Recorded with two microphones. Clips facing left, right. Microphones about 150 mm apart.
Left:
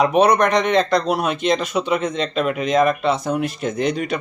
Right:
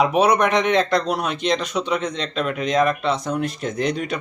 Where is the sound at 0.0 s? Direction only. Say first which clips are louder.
Left 2 dB; 5° right (ahead or behind).